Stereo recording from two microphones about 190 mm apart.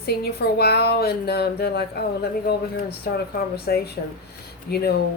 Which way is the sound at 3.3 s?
55° left (ahead or behind).